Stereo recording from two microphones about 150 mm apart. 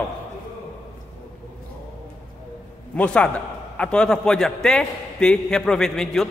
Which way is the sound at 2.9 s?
5° left (ahead or behind).